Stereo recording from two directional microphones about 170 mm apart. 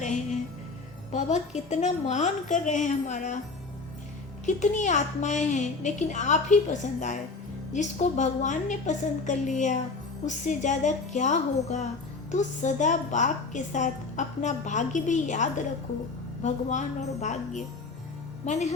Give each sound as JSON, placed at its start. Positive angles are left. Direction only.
{"t": 1.1, "sound": "a woman's voice", "side_deg": 45}
{"t": 4.4, "sound": "a woman's voice", "side_deg": 45}